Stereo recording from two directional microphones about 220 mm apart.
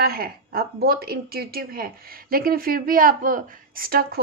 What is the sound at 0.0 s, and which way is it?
A woman's voice, 45° right (ahead or behind).